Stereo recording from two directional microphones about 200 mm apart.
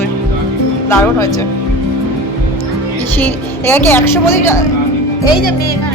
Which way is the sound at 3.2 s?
10° left (ahead or behind).